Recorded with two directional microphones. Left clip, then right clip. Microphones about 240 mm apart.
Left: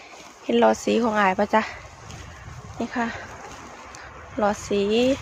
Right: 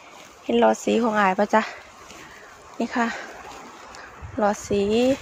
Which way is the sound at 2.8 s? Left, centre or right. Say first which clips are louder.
Right 3 dB; centre.